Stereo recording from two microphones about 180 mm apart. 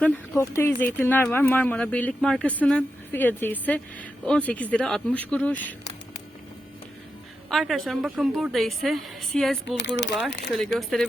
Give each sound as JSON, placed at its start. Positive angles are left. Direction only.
{"t": 0.0, "sound": "speech", "side_deg": 10}
{"t": 7.5, "sound": "a woman's voice", "side_deg": 0}
{"t": 9.8, "sound": "speech", "side_deg": 75}
{"t": 10.5, "sound": "a woman's voice", "side_deg": 0}